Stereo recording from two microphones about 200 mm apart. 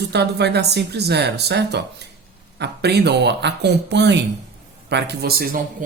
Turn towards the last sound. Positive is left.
turn(degrees=-45)  # may be behind; listen again after turning